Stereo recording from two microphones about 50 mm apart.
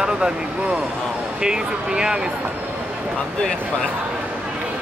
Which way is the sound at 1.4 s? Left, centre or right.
Centre.